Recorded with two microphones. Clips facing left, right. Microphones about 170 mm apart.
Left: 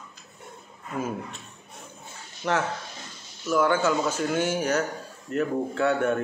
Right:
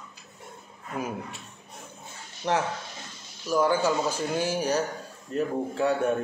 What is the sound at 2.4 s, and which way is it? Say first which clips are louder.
Speech: even; 25° right (ahead or behind).